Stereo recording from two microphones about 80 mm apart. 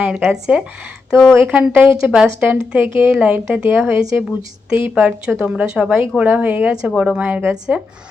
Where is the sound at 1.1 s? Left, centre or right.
Centre.